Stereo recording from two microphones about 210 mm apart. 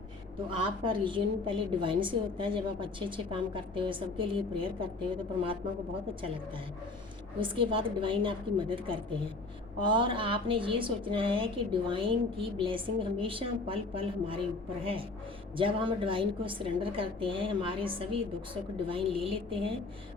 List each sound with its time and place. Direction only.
0.6 s a woman's voice: 25° right (ahead or behind)
7.3 s a woman's voice: 25° right (ahead or behind)
15.5 s a woman's voice: 25° right (ahead or behind)